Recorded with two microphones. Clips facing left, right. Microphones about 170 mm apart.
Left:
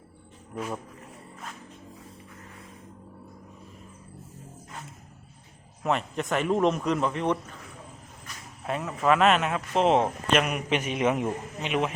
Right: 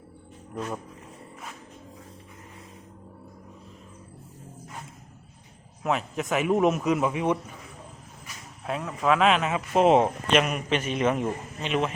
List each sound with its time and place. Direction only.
0.5 s speech: 5° left (ahead or behind)
5.8 s a man's voice: centre (ahead or behind)
8.6 s speech: centre (ahead or behind)